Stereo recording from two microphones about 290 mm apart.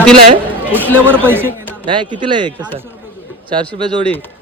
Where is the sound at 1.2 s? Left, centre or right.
Centre.